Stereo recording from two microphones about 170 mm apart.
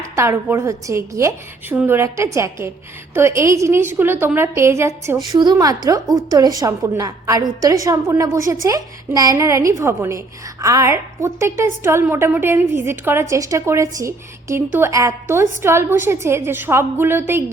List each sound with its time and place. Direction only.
0.0 s a woman's voice: 15° right (ahead or behind)